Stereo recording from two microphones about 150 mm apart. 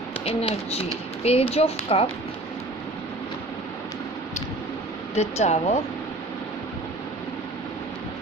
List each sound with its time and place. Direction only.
0.3 s speech: 40° left (ahead or behind)
5.1 s speech: 45° left (ahead or behind)